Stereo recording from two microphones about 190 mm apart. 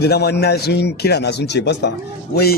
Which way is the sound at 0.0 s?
60° left (ahead or behind).